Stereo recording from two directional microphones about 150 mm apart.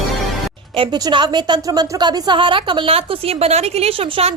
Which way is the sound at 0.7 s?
30° right (ahead or behind).